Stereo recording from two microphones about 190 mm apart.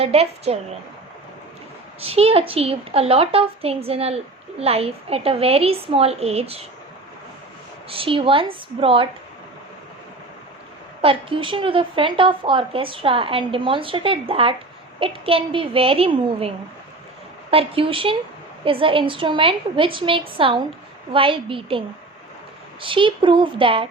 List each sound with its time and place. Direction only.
0.0 s a woman's voice: 30° right (ahead or behind)
2.0 s a woman's voice: 30° right (ahead or behind)
7.9 s a woman's voice: 30° right (ahead or behind)
11.0 s a woman's voice: 30° right (ahead or behind)
17.5 s a woman's voice: 30° right (ahead or behind)